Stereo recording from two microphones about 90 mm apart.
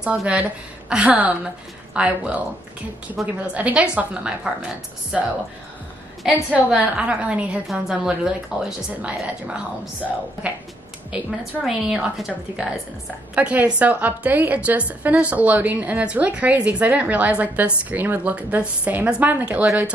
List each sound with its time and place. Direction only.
0.0 s a woman's voice: 10° right (ahead or behind)
6.5 s a woman's voice: 15° right (ahead or behind)
11.6 s a woman's voice: 5° right (ahead or behind)
13.3 s a woman's voice: 15° right (ahead or behind)